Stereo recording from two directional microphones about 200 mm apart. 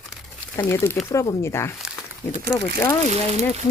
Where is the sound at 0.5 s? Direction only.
15° left (ahead or behind).